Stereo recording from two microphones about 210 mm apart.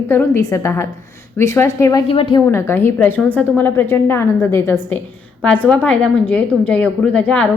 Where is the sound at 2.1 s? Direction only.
25° left (ahead or behind).